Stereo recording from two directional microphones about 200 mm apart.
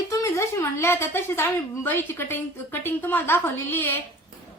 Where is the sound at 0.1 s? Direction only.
15° left (ahead or behind).